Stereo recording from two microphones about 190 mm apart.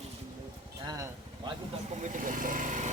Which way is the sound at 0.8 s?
20° right (ahead or behind).